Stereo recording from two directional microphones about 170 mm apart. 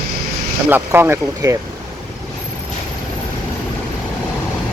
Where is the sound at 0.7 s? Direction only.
10° right (ahead or behind).